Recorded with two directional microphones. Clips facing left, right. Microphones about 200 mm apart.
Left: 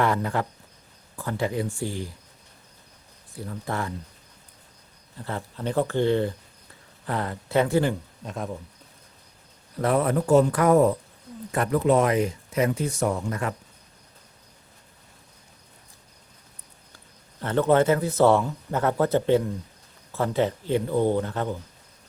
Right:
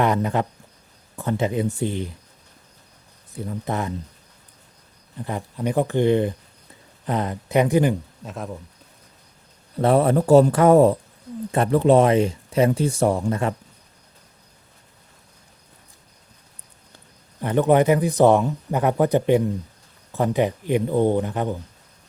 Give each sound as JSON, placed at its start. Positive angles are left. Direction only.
{"t": 0.0, "sound": "speech", "side_deg": -20}
{"t": 3.3, "sound": "speech", "side_deg": -20}
{"t": 5.1, "sound": "speech", "side_deg": -15}
{"t": 8.2, "sound": "speech", "side_deg": 0}
{"t": 9.8, "sound": "speech", "side_deg": -30}
{"t": 17.4, "sound": "speech", "side_deg": -15}